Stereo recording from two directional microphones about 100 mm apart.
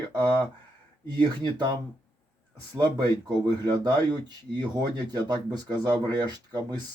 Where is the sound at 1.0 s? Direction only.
45° right (ahead or behind).